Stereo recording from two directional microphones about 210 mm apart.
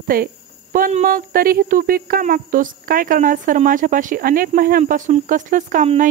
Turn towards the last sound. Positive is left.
turn(degrees=-35)  # may be behind; listen again after turning